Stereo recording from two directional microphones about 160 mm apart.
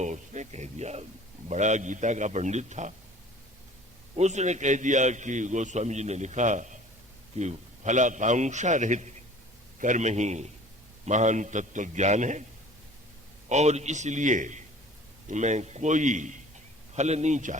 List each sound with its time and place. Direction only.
0.0 s a sound: 50° right (ahead or behind)
1.5 s a man's voice: 50° right (ahead or behind)
4.1 s a man's voice: 45° right (ahead or behind)
13.5 s a man's voice: 45° right (ahead or behind)